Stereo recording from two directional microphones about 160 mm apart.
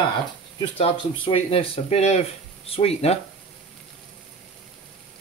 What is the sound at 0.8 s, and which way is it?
Speech, 40° left (ahead or behind).